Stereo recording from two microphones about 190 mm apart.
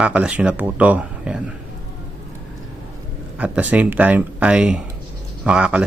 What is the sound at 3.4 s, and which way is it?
Speech, 10° right (ahead or behind).